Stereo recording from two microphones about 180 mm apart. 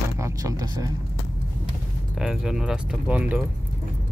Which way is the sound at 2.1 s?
5° right (ahead or behind).